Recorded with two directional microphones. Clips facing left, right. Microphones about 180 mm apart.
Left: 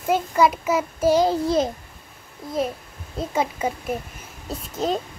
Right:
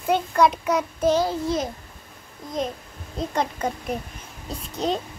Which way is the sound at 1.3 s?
30° left (ahead or behind).